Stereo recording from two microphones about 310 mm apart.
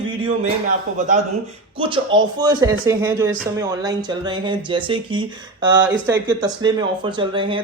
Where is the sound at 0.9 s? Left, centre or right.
Right.